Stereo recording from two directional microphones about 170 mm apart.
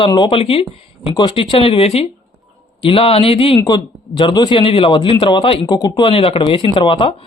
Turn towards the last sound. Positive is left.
turn(degrees=30)  # may be behind; listen again after turning